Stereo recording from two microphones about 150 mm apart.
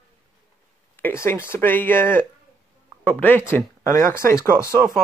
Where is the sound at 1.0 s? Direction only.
15° left (ahead or behind).